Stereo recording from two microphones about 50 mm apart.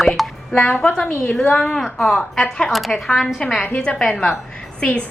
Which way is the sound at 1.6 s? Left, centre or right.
Centre.